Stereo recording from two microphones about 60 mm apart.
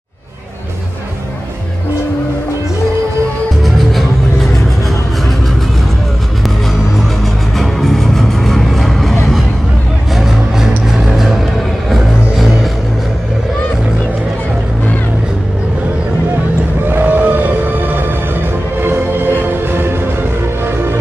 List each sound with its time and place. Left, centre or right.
7.5 s music: centre
10.1 s music: centre
16.9 s music: right